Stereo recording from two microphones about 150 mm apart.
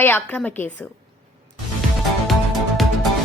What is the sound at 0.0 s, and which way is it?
Speech, 10° left (ahead or behind).